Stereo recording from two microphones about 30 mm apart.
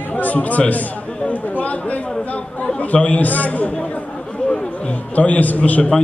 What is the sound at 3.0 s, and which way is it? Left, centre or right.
Speech, left.